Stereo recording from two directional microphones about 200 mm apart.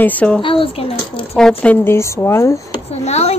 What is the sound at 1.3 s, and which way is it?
Speech, centre (ahead or behind).